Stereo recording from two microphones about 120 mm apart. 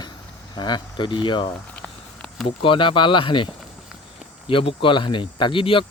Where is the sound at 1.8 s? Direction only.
5° left (ahead or behind).